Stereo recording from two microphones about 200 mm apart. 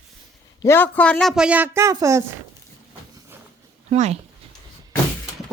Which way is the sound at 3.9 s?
35° right (ahead or behind).